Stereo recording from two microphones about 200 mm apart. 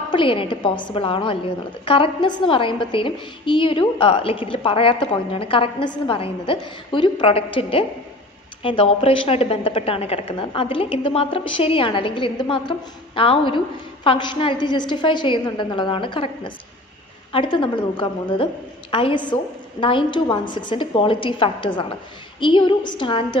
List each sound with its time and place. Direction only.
0.1 s a woman's voice: 25° left (ahead or behind)